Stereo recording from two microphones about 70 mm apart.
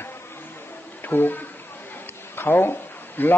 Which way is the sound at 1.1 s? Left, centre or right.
Left.